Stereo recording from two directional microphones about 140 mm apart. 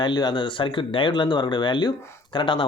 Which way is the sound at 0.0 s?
30° left (ahead or behind).